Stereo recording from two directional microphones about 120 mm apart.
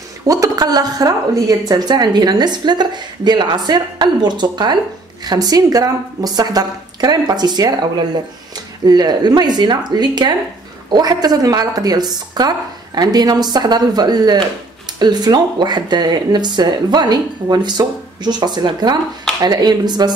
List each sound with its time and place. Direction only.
0.3 s a woman's voice: 30° right (ahead or behind)